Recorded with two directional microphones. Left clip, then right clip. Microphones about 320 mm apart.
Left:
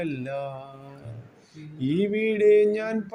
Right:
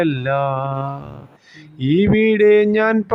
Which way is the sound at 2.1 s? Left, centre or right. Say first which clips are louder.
Right 6 dB; centre.